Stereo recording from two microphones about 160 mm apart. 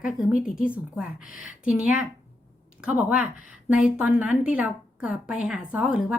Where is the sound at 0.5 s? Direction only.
60° left (ahead or behind).